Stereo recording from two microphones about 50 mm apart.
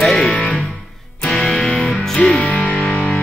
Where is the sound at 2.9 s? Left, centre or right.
Left.